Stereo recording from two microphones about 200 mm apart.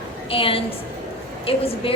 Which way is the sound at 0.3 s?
25° left (ahead or behind).